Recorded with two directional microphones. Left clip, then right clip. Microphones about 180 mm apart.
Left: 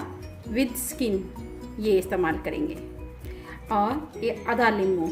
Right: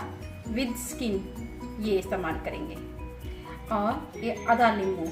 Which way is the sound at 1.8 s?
55° left (ahead or behind).